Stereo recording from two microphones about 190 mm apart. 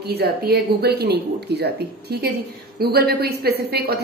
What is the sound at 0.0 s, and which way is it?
A woman's voice, 55° right (ahead or behind).